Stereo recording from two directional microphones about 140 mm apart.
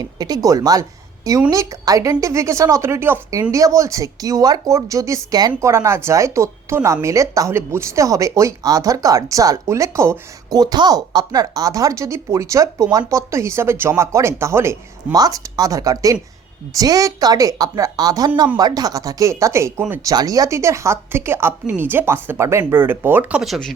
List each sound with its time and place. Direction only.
0.0 s a woman's voice: 30° right (ahead or behind)
23.4 s speech: centre (ahead or behind)